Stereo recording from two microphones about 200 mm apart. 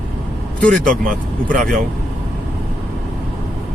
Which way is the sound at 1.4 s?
40° right (ahead or behind).